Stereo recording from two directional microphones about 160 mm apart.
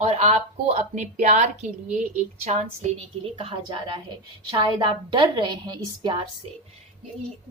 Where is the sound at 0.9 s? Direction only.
45° right (ahead or behind).